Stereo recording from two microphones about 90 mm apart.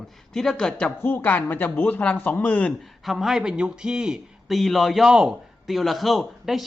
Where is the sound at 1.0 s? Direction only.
25° left (ahead or behind).